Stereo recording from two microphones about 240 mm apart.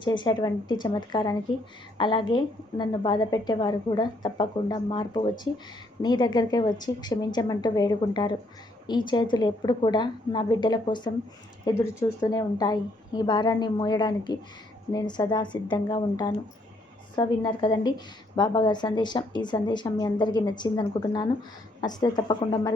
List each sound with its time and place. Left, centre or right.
0.0 s a woman's voice: centre